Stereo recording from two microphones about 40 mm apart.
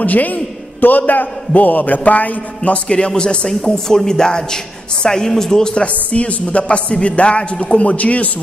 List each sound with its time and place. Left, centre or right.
0.0 s a man's voice: left
3.4 s a woman's voice: centre
6.1 s a man's voice: left